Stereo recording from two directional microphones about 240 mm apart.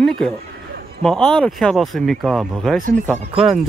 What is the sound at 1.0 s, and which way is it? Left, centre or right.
Speech, centre.